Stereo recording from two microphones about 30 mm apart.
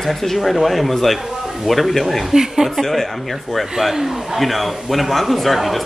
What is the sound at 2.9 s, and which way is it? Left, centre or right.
Speech, centre.